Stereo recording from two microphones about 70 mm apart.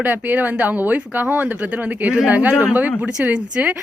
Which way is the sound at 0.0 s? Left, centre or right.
Right.